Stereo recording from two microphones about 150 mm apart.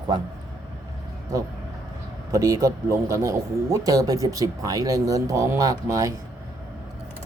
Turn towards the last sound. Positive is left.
turn(degrees=-20)  # may be behind; listen again after turning